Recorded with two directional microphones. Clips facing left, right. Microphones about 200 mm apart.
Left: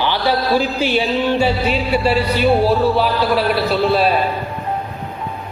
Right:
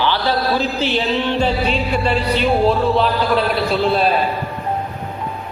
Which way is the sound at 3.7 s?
Centre (ahead or behind).